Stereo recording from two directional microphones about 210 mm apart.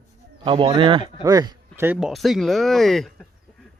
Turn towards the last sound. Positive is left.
turn(degrees=0)  # may be behind; listen again after turning